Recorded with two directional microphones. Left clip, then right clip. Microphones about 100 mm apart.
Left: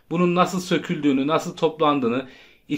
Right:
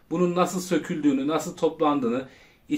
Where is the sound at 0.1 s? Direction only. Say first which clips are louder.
Left 3 dB; 35° left (ahead or behind).